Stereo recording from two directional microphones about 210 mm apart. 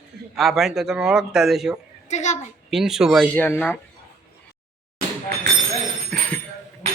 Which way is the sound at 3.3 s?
10° left (ahead or behind).